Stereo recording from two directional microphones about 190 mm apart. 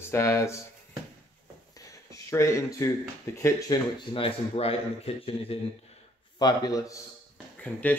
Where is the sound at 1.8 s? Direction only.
15° left (ahead or behind).